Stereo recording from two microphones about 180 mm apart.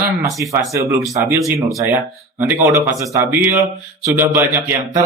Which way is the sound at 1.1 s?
20° right (ahead or behind).